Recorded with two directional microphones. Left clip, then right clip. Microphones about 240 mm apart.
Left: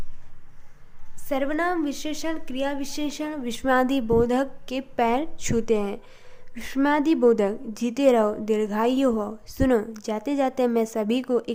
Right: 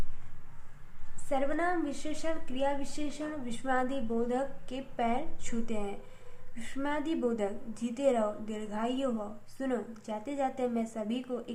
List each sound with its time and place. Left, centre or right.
1.3 s a woman's voice: left